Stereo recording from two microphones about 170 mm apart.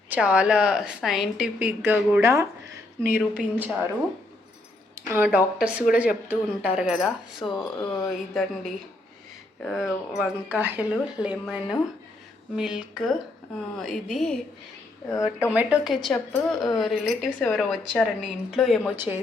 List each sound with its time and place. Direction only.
0.1 s a woman's voice: 5° right (ahead or behind)
5.1 s a woman's voice: 10° right (ahead or behind)
7.5 s speech: 30° left (ahead or behind)
8.0 s a woman's voice: centre (ahead or behind)
15.4 s a woman's voice: 5° right (ahead or behind)